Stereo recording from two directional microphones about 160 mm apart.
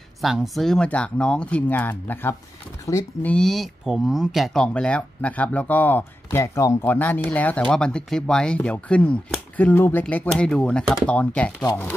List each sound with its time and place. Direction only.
0.2 s speech: centre (ahead or behind); by 3.3 s 20° left (ahead or behind)
3.3 s speech: 5° left (ahead or behind)